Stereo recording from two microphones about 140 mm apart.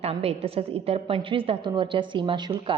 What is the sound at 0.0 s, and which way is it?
A woman's voice, 45° right (ahead or behind).